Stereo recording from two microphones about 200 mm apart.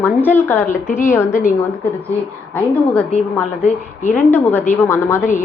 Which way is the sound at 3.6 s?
40° left (ahead or behind).